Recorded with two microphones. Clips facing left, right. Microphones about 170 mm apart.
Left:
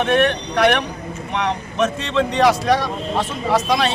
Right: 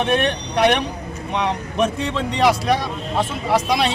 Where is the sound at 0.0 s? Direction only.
15° right (ahead or behind).